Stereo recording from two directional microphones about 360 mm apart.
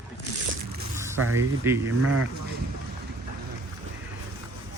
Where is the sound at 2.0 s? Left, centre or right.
Right.